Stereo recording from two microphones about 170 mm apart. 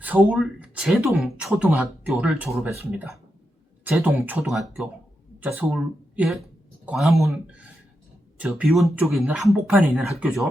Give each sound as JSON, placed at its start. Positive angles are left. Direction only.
{"t": 0.0, "sound": "speech", "side_deg": -10}
{"t": 2.5, "sound": "speech", "side_deg": -15}
{"t": 8.4, "sound": "speech", "side_deg": -5}